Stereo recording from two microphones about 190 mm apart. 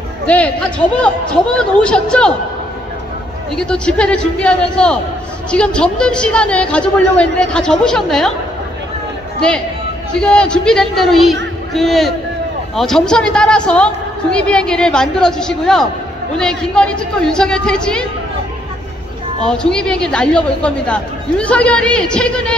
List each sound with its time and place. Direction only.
0.3 s a woman's voice: 5° left (ahead or behind)
3.5 s a woman's voice: 5° left (ahead or behind)
10.2 s a woman's voice: 5° left (ahead or behind)
19.4 s a woman's voice: 5° left (ahead or behind)